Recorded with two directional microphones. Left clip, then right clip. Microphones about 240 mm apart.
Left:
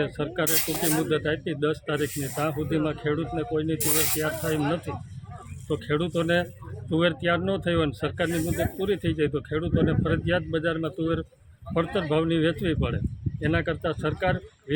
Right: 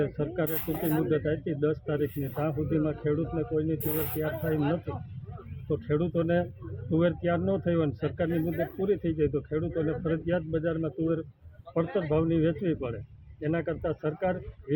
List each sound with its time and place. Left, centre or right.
0.0 s speech: centre
0.5 s speech: left
1.1 s speech: centre
3.9 s rub: left
5.6 s speech: centre